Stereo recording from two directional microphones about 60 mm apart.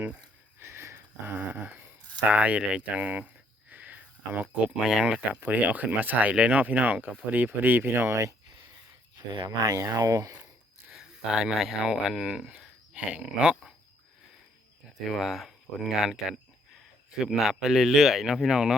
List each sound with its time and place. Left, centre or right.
0.6 s a sound: right
2.3 s speech: right
3.7 s a sound: right
4.6 s speech: centre
5.3 s speech: right
9.6 s speech: right
10.9 s a sound: centre
11.5 s speech: centre
12.9 s speech: centre
15.1 s speech: centre